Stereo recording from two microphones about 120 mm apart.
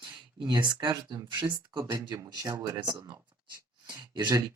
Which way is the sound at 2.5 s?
25° right (ahead or behind).